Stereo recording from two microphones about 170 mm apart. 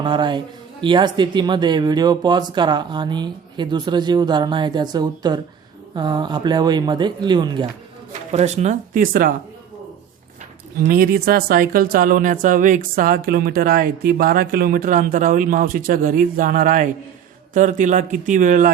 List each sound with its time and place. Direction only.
0.0 s speech: 30° right (ahead or behind)
8.3 s speech: 40° right (ahead or behind)
10.8 s speech: 60° right (ahead or behind)